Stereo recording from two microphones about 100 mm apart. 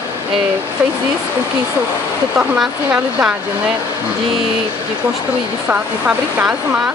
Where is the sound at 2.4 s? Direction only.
10° right (ahead or behind).